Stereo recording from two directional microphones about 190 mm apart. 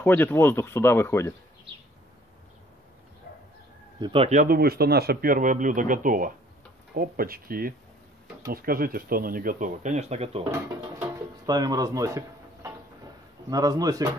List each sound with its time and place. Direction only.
0.0 s speech: 10° left (ahead or behind)
4.0 s speech: 30° right (ahead or behind)
11.0 s a sound: 20° right (ahead or behind)